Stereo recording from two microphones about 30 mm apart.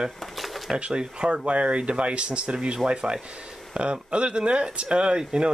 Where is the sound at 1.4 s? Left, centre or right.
Right.